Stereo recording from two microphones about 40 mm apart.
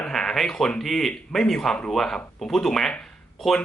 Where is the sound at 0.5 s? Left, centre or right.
Left.